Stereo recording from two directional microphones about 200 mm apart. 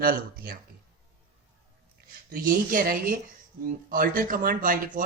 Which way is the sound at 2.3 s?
45° right (ahead or behind).